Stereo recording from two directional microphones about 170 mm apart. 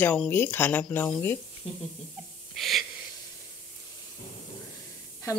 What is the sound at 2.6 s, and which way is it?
Wheeze, centre (ahead or behind).